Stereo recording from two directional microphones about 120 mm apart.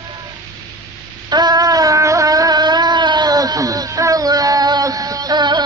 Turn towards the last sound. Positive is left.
turn(degrees=-40)  # may be behind; listen again after turning